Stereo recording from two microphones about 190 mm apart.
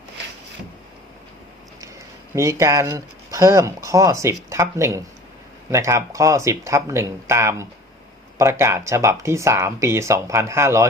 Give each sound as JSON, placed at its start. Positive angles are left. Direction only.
{"t": 2.3, "sound": "speech", "side_deg": -15}